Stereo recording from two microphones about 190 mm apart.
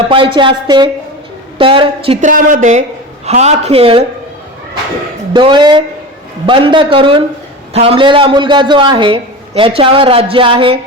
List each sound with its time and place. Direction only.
0.0 s a man's voice: 25° right (ahead or behind)
2.3 s speech: 45° right (ahead or behind); by 4.0 s 30° right (ahead or behind)
5.3 s a man's voice: 25° right (ahead or behind)